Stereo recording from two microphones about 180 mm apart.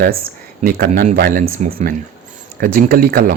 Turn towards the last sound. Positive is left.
turn(degrees=-55)  # may be behind; listen again after turning